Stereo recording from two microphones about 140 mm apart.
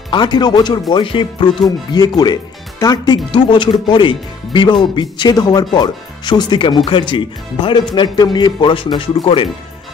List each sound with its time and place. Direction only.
0.1 s speech: 30° left (ahead or behind)